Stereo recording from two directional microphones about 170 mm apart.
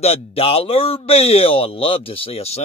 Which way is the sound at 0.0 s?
35° left (ahead or behind).